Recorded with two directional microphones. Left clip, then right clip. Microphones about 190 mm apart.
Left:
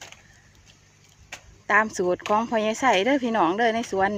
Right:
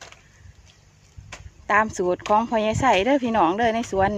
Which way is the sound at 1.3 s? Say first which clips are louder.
Left 1 dB; 45° right (ahead or behind).